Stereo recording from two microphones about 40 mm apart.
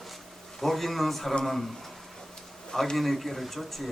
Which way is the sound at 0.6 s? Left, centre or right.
Centre.